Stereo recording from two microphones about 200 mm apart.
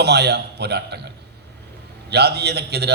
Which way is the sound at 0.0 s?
55° right (ahead or behind).